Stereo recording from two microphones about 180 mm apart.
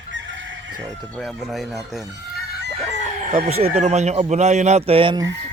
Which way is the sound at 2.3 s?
70° right (ahead or behind).